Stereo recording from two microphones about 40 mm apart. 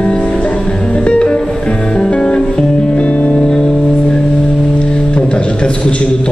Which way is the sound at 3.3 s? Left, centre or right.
Centre.